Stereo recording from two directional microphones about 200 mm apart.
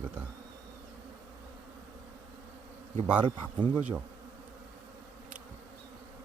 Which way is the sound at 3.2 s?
25° right (ahead or behind).